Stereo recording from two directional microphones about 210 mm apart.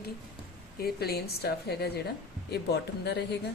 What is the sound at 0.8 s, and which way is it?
A woman's voice, 50° left (ahead or behind).